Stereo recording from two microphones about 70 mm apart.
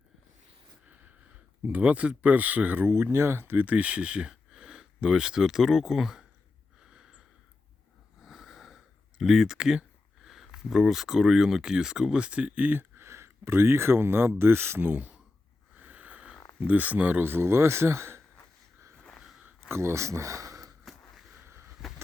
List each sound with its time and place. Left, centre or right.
1.6 s speech: centre
2.9 s speech: right; by 6.2 s centre
6.9 s snort: centre
8.2 s sniff: centre
10.2 s speech: centre; by 15.2 s right
15.8 s a sound: right
16.6 s speech: right
19.5 s a sound: right
21.8 s a sound: centre